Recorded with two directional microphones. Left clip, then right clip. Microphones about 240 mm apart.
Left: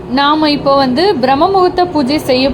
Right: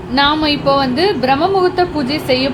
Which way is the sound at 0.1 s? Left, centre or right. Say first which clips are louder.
Left 3 dB; centre.